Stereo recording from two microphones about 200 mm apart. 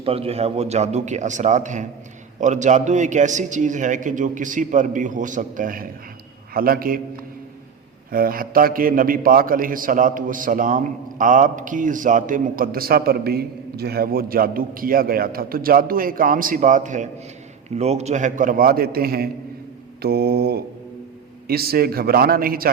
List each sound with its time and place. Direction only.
0.0 s a man's voice: 30° right (ahead or behind); by 7.0 s 45° right (ahead or behind)
8.1 s a man's voice: 45° right (ahead or behind)